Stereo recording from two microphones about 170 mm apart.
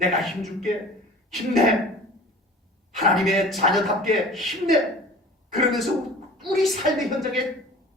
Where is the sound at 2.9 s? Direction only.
Centre (ahead or behind).